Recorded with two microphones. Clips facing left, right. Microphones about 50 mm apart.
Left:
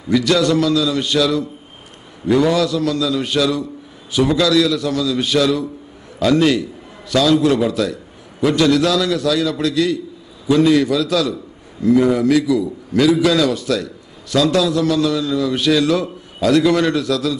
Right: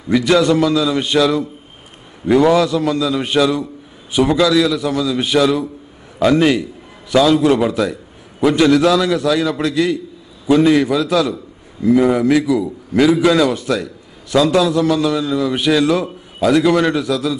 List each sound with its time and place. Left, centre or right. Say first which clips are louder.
0.1 s a man's voice: right 2 dB; right